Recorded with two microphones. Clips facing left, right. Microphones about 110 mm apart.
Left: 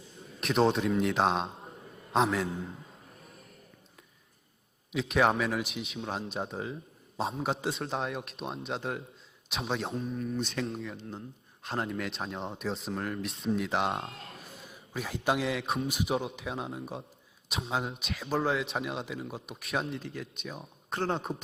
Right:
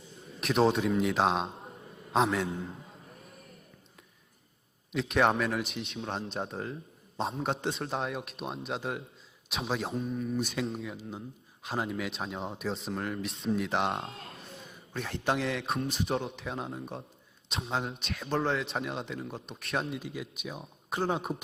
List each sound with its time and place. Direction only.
0.3 s a man's voice: centre (ahead or behind)
4.9 s a man's voice: centre (ahead or behind)